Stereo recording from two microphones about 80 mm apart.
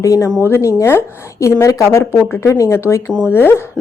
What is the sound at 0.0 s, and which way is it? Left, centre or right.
A woman's voice, left.